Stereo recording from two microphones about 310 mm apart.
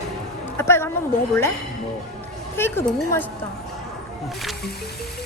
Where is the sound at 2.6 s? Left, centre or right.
Centre.